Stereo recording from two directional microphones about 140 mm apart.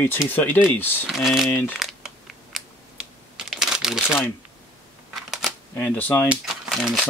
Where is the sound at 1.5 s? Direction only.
15° left (ahead or behind).